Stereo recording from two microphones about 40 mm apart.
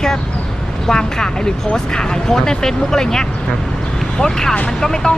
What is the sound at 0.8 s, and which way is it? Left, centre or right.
Speech, centre.